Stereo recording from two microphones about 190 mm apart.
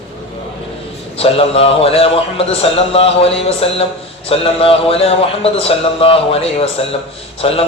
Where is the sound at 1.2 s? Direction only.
30° left (ahead or behind).